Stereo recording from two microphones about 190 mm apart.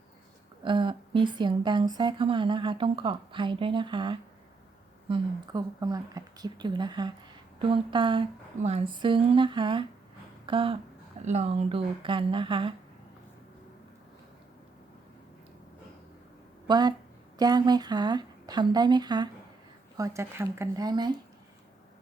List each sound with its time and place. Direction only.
0.6 s speech: 25° right (ahead or behind)
16.6 s speech: 20° right (ahead or behind)